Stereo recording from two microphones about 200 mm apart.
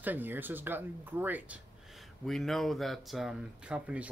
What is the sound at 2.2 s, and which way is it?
Speech, centre (ahead or behind).